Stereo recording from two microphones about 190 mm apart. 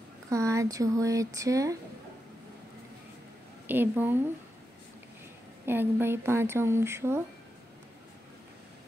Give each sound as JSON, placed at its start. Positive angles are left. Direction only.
{"t": 0.3, "sound": "speech", "side_deg": -15}
{"t": 3.6, "sound": "speech", "side_deg": -10}
{"t": 5.7, "sound": "speech", "side_deg": -10}